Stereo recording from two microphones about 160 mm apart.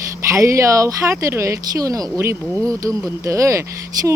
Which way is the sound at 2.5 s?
5° left (ahead or behind).